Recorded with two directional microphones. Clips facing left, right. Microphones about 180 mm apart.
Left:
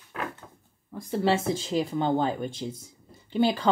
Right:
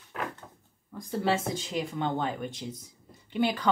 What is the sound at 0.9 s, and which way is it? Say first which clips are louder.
A woman's voice: left 3 dB; 30° left (ahead or behind).